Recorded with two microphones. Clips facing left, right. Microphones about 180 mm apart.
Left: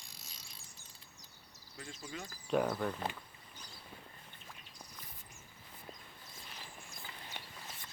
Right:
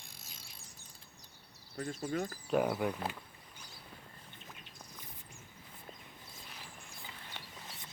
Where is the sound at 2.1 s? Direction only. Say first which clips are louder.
Right 11 dB; 55° right (ahead or behind).